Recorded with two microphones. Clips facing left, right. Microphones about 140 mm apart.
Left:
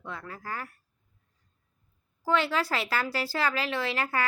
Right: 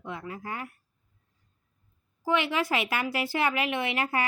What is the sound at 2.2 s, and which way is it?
A woman's voice, 15° right (ahead or behind).